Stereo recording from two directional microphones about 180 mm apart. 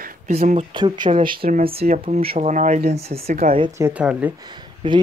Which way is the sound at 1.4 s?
55° right (ahead or behind).